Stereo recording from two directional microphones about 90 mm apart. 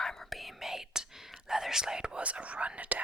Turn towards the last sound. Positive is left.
turn(degrees=-15)  # may be behind; listen again after turning